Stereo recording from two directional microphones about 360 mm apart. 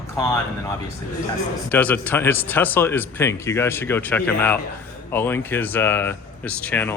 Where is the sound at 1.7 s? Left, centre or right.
Centre.